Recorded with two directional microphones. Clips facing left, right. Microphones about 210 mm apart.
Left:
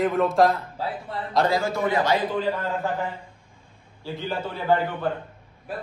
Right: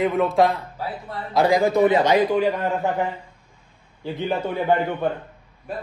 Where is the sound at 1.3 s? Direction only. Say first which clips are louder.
Right 5 dB; 15° right (ahead or behind).